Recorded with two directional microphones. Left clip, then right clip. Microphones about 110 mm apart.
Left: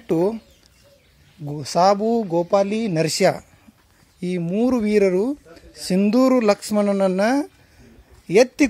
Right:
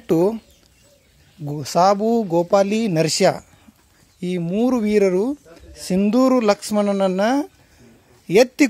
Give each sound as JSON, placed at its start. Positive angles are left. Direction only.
{"t": 0.1, "sound": "speech", "side_deg": -30}
{"t": 1.4, "sound": "speech", "side_deg": -25}
{"t": 8.3, "sound": "speech", "side_deg": -20}